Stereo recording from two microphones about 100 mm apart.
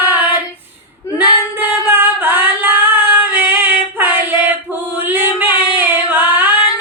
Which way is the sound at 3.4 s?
20° right (ahead or behind).